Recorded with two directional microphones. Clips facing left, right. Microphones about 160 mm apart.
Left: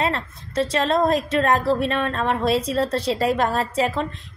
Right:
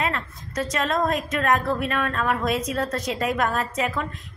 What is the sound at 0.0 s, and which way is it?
A woman's voice, 30° left (ahead or behind).